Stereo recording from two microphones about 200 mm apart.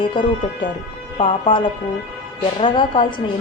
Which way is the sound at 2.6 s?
25° left (ahead or behind).